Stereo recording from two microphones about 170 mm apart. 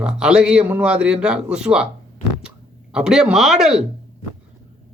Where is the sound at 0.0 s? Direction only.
5° right (ahead or behind).